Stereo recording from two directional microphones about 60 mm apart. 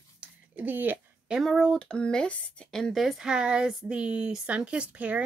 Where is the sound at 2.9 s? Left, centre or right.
Centre.